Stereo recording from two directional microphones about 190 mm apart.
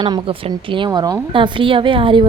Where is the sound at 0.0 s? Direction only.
25° right (ahead or behind).